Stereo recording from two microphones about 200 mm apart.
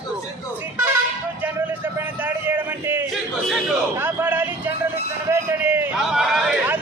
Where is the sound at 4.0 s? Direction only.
10° right (ahead or behind).